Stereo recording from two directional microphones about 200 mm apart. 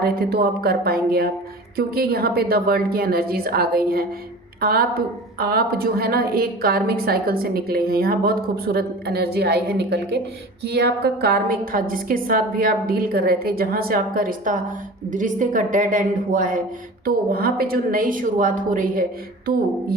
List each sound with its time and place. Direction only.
0.0 s a woman's voice: 50° right (ahead or behind)